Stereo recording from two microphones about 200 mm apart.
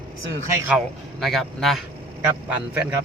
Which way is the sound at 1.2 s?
Centre (ahead or behind).